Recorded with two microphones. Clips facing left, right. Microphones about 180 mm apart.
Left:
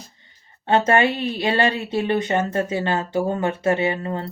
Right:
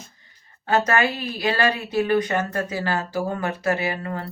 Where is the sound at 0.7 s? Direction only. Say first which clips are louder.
Left 3 dB; 25° left (ahead or behind).